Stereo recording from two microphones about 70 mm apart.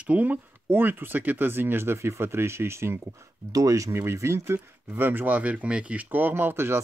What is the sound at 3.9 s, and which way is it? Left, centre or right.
Speech, right.